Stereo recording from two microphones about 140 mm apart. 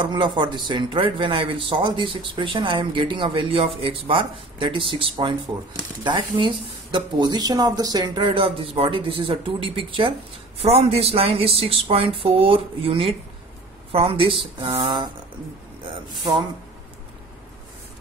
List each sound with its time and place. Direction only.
0.0 s speech: 35° right (ahead or behind)